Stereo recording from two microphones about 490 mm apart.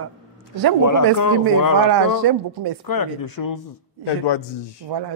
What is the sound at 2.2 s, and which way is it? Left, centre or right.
Speech, right.